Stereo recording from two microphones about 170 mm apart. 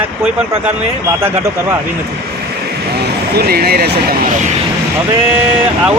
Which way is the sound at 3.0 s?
70° right (ahead or behind).